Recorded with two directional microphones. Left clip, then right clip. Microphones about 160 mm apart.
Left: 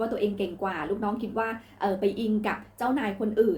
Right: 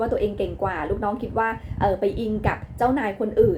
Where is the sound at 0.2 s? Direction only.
15° left (ahead or behind).